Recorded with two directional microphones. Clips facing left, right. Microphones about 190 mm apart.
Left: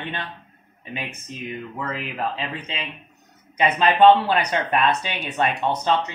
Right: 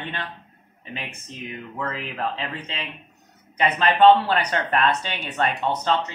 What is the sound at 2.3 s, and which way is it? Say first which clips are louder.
Speech: left 1 dB; 15° left (ahead or behind).